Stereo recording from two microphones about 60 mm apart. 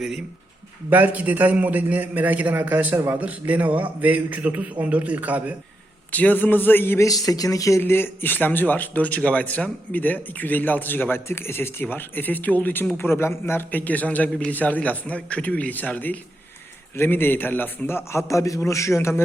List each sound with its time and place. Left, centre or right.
0.9 s a man's voice: right
6.1 s speech: left
7.0 s speech: left
7.8 s a man's voice: left